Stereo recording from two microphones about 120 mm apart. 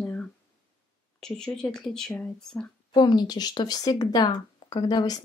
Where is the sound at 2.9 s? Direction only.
35° left (ahead or behind).